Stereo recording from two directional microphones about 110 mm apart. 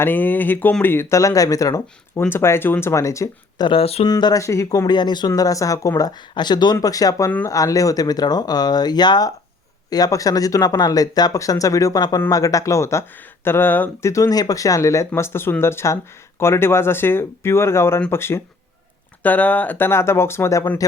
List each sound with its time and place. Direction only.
0.0 s speech: 20° left (ahead or behind)
3.6 s speech: 55° left (ahead or behind)
4.0 s speech: 40° left (ahead or behind)
4.9 s speech: 40° left (ahead or behind); by 14.1 s 20° left (ahead or behind)
14.1 s speech: 30° left (ahead or behind)